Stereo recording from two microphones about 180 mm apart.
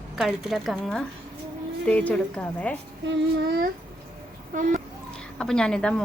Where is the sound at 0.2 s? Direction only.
Centre (ahead or behind).